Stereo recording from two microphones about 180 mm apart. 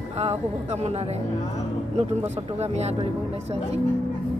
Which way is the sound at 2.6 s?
35° right (ahead or behind).